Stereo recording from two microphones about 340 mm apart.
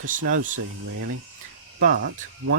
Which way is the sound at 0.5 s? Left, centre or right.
Right.